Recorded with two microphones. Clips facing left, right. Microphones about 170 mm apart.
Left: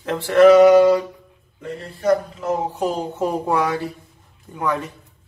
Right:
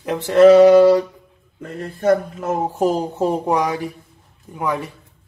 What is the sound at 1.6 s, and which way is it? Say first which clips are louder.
Speech: right 2 dB; 50° right (ahead or behind).